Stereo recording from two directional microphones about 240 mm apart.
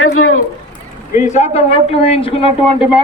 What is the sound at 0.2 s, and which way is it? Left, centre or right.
Speech, left.